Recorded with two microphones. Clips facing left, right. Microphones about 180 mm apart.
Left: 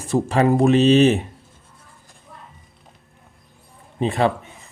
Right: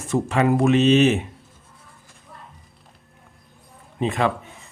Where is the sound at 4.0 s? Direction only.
35° left (ahead or behind).